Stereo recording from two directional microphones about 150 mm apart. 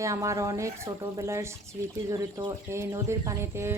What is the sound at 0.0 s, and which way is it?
Speech, 20° right (ahead or behind).